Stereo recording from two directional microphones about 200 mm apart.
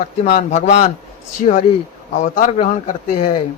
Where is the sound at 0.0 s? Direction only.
35° left (ahead or behind).